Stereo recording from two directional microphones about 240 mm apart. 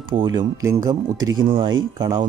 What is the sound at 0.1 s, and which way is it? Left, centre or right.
Speech, right.